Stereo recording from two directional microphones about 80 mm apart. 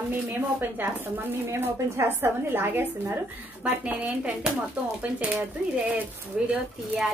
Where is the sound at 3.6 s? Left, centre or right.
Centre.